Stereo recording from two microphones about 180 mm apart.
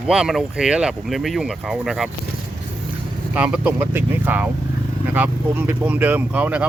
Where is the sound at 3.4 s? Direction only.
5° right (ahead or behind).